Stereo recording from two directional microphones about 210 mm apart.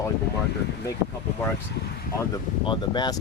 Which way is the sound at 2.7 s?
20° left (ahead or behind).